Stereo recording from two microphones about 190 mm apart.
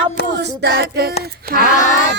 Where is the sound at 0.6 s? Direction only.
60° right (ahead or behind).